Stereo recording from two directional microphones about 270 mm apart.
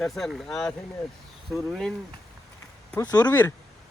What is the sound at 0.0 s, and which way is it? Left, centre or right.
Speech, centre.